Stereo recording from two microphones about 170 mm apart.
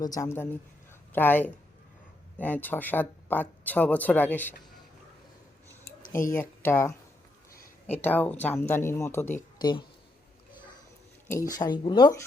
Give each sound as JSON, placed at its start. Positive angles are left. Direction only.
{"t": 0.0, "sound": "speech", "side_deg": 20}
{"t": 6.7, "sound": "speech", "side_deg": 15}
{"t": 8.0, "sound": "speech", "side_deg": 10}
{"t": 11.3, "sound": "speech", "side_deg": 20}